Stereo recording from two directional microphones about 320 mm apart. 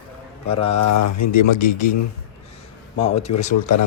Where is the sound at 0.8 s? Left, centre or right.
Left.